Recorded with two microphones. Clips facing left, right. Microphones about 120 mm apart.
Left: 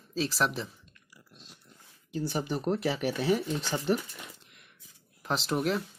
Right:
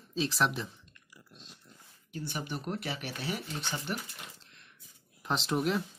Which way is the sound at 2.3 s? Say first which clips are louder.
Left 7 dB; 35° left (ahead or behind).